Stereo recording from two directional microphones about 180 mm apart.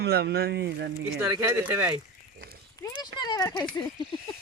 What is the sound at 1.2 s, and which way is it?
Speech, 20° right (ahead or behind).